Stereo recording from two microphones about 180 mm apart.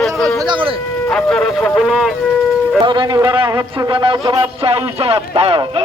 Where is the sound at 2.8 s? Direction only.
25° right (ahead or behind).